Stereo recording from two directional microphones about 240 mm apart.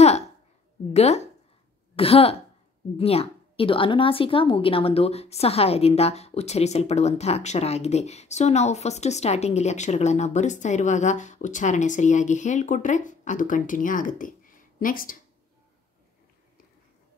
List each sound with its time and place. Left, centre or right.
0.9 s a woman's voice: left